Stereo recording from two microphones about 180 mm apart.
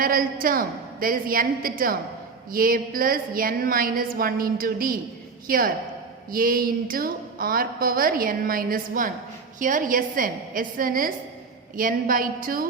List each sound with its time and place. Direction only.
0.0 s a woman's voice: 50° right (ahead or behind)